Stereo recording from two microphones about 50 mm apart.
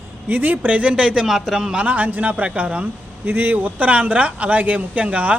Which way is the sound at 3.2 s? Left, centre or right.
Right.